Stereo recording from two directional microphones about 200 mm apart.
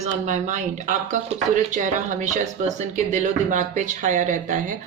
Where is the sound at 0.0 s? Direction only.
35° right (ahead or behind).